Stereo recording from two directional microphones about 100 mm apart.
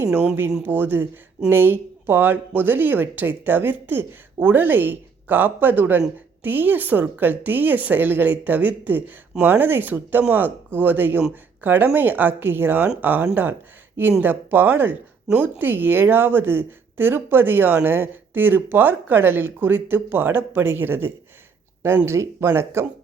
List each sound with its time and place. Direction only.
0.6 s speech: 20° right (ahead or behind)